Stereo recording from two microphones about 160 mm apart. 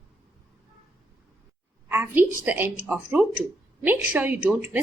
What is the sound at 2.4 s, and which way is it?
Speech, 10° right (ahead or behind).